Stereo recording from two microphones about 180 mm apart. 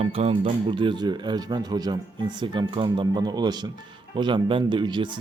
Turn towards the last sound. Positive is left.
turn(degrees=-25)  # may be behind; listen again after turning